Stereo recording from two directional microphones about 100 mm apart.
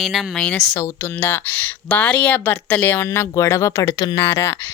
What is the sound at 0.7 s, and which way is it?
Speech, 35° left (ahead or behind).